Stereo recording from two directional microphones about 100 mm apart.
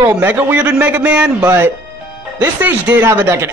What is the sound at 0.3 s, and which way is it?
A man's voice, 15° right (ahead or behind).